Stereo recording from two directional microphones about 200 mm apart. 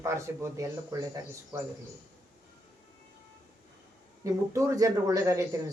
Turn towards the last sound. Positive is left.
turn(degrees=-15)  # may be behind; listen again after turning